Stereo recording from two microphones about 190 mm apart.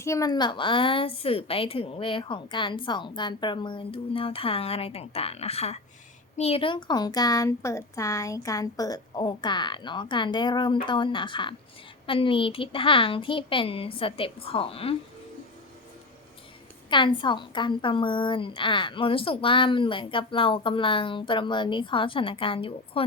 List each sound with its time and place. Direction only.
0.0 s a woman's voice: 15° left (ahead or behind)
16.9 s a woman's voice: 25° left (ahead or behind)